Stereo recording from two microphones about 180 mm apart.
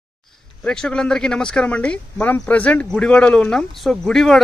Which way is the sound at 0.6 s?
5° left (ahead or behind).